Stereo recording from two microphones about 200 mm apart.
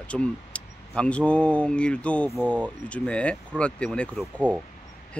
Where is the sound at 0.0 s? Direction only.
5° left (ahead or behind).